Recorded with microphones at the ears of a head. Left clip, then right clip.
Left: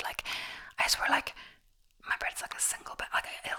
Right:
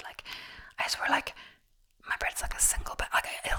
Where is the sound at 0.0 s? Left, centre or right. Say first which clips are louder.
Left 6 dB; left.